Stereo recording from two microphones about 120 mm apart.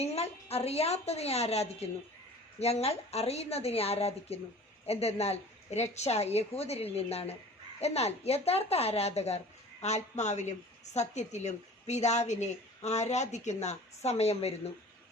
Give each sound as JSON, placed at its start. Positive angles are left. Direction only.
{"t": 0.0, "sound": "a woman's voice", "side_deg": 60}